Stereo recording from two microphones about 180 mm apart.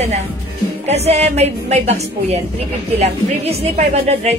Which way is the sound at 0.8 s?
35° right (ahead or behind).